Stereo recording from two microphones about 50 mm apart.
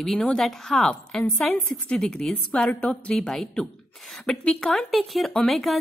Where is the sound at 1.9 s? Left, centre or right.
Centre.